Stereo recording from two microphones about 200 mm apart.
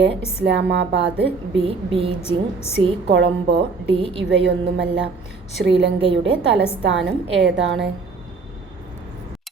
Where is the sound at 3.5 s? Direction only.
25° right (ahead or behind).